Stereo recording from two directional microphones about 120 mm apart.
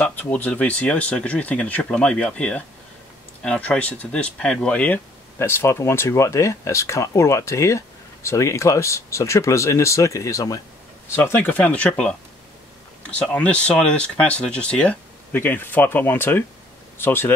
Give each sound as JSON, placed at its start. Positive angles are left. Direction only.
{"t": 0.0, "sound": "speech", "side_deg": 15}
{"t": 11.1, "sound": "speech", "side_deg": 20}